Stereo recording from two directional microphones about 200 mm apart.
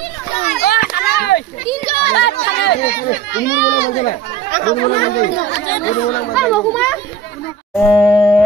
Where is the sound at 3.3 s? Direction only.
60° left (ahead or behind).